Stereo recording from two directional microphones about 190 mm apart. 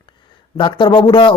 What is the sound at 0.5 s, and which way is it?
Speech, 25° left (ahead or behind).